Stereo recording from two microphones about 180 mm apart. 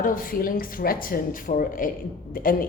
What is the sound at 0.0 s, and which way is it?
A woman's voice, 50° left (ahead or behind).